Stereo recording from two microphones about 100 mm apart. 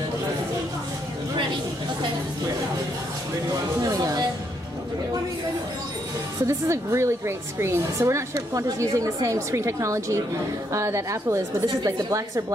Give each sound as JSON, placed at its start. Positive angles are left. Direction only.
{"t": 3.8, "sound": "speech", "side_deg": -40}
{"t": 6.4, "sound": "a woman's voice", "side_deg": -30}